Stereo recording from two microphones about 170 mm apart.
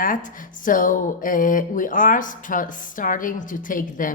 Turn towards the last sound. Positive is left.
turn(degrees=50)  # may be behind; listen again after turning